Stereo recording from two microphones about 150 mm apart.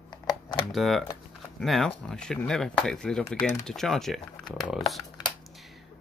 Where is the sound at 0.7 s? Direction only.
Centre (ahead or behind).